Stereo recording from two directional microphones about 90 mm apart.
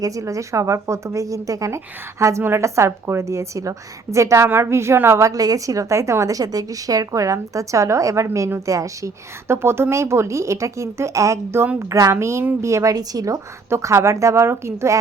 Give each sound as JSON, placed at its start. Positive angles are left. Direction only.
{"t": 0.0, "sound": "a woman's voice", "side_deg": -40}